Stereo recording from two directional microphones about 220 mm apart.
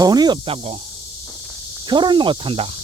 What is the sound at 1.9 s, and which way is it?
Speech, 20° right (ahead or behind).